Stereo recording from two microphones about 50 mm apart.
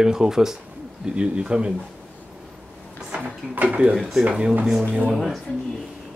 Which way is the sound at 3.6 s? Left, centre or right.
Right.